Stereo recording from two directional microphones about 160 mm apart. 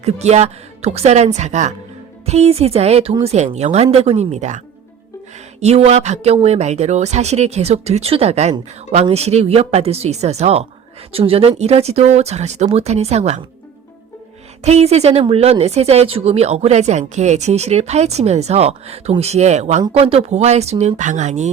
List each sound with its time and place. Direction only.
0.0 s speech: 45° right (ahead or behind)
14.6 s speech: 40° right (ahead or behind)